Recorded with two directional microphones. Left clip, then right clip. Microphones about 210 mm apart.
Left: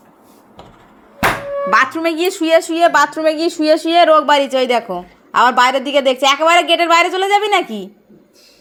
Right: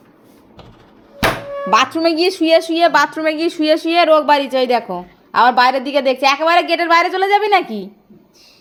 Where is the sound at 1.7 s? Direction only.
30° right (ahead or behind).